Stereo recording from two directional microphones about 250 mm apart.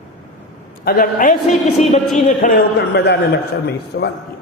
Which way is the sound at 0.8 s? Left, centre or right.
Left.